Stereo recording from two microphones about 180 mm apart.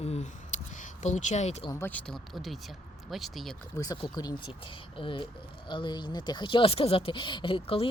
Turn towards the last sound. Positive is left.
turn(degrees=30)  # may be behind; listen again after turning